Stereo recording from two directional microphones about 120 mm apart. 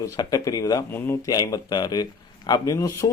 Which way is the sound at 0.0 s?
30° left (ahead or behind).